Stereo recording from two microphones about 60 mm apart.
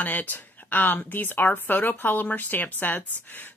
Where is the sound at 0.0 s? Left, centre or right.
Left.